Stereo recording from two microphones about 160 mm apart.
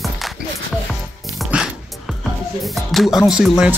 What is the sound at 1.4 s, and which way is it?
Music, 5° right (ahead or behind).